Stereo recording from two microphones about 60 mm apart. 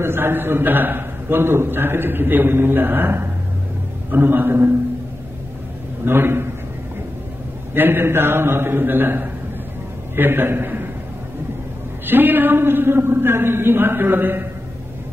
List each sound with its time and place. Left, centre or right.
0.0 s a man's voice: right
6.0 s a man's voice: right
7.7 s a man's voice: right
12.1 s a man's voice: right